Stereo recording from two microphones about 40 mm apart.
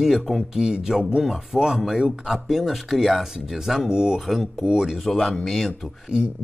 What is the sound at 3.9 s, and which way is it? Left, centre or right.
Speech, centre.